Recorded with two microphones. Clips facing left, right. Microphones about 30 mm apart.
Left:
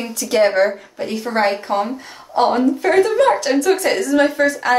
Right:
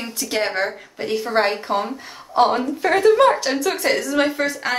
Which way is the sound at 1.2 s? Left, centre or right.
Centre.